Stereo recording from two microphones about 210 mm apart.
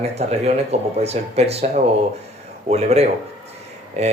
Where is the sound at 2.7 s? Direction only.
30° right (ahead or behind).